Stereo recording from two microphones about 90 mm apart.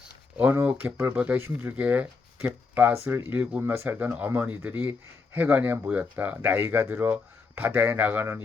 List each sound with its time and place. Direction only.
0.3 s speech: 20° right (ahead or behind)
3.6 s speech: 25° right (ahead or behind)